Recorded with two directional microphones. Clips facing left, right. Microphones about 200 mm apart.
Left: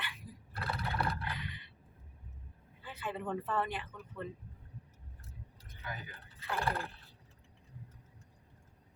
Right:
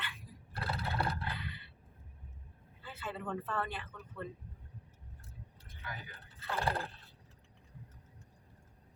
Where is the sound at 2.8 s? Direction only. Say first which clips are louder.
Left 2 dB; 15° left (ahead or behind).